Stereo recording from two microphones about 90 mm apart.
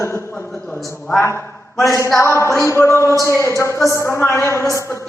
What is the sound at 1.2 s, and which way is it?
A woman's voice, 30° left (ahead or behind).